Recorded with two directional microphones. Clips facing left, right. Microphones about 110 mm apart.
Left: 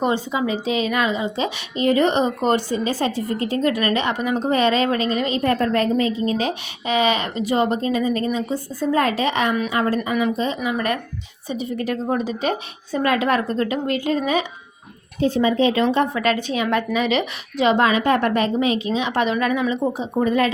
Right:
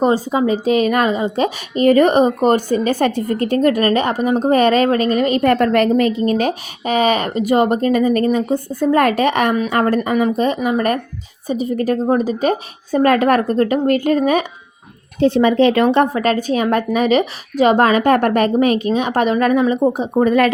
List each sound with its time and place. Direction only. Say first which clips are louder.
0.0 s a woman's voice: right 6 dB; 40° right (ahead or behind)
15.2 s speech: right 5 dB; 70° right (ahead or behind)
16.1 s a woman's voice: right 4 dB; 40° right (ahead or behind); by 20.5 s 65° right (ahead or behind)